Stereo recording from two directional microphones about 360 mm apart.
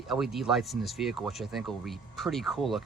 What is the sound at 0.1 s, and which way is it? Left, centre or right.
Speech, centre.